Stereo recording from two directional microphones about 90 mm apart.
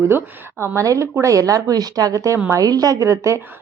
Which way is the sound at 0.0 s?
25° right (ahead or behind).